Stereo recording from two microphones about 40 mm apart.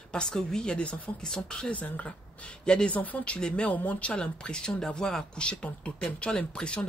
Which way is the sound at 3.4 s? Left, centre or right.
Centre.